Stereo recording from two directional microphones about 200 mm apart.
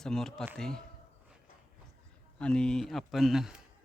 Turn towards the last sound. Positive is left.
turn(degrees=-5)  # may be behind; listen again after turning